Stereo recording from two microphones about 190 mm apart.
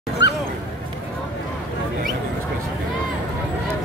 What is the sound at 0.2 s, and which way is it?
Dog, 70° left (ahead or behind).